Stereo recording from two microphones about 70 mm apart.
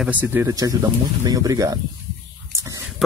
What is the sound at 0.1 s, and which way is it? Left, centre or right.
Speech, right.